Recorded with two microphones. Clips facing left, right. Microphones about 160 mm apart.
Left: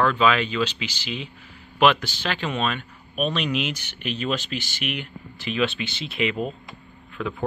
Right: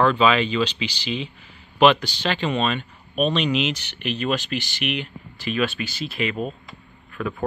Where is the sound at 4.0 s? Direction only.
55° right (ahead or behind).